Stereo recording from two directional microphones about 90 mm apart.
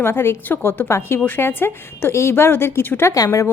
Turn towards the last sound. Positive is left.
turn(degrees=40)  # may be behind; listen again after turning